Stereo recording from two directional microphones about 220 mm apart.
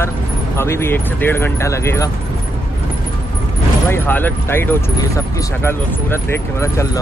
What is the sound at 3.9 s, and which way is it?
Speech, 10° left (ahead or behind).